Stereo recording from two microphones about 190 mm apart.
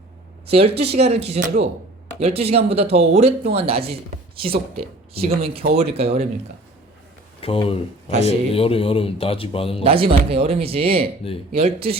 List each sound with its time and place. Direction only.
0.4 s speech: 30° right (ahead or behind)
4.5 s speech: 50° right (ahead or behind)
5.4 s speech: 30° right (ahead or behind)
7.4 s a man's voice: 30° left (ahead or behind)
9.8 s speech: 30° right (ahead or behind)